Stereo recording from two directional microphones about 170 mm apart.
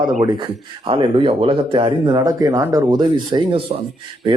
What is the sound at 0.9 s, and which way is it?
Speech, 30° right (ahead or behind).